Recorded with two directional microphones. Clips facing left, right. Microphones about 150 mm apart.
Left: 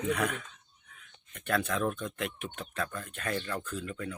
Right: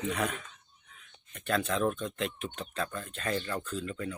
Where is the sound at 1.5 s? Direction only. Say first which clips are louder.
Right 1 dB; 20° right (ahead or behind).